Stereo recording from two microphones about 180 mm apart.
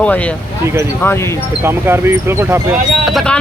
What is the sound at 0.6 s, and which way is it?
Speech, 15° right (ahead or behind).